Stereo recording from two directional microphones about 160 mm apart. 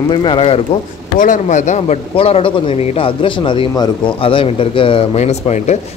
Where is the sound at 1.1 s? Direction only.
55° left (ahead or behind).